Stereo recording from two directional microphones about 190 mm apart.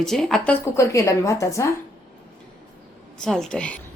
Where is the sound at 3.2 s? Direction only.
Centre (ahead or behind).